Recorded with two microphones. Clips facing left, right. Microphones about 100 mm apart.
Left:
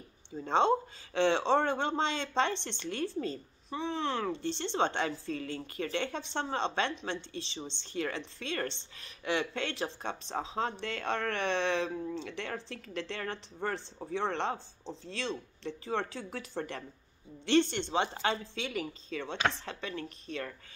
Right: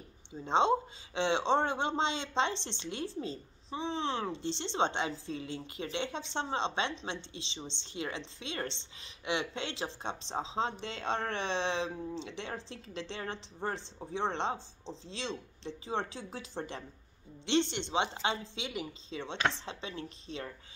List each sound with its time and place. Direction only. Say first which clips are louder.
0.3 s speech: left 1 dB; 20° right (ahead or behind)